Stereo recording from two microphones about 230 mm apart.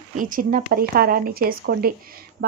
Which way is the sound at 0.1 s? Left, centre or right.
Right.